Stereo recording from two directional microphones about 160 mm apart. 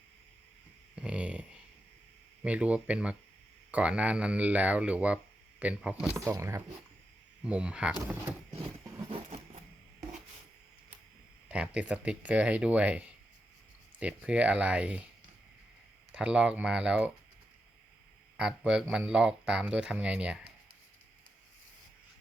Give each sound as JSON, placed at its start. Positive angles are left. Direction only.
{"t": 0.9, "sound": "speech", "side_deg": -5}
{"t": 7.4, "sound": "speech", "side_deg": -5}
{"t": 9.0, "sound": "a sound", "side_deg": -35}
{"t": 11.4, "sound": "speech", "side_deg": -5}
{"t": 16.1, "sound": "speech", "side_deg": -5}
{"t": 18.3, "sound": "speech", "side_deg": -5}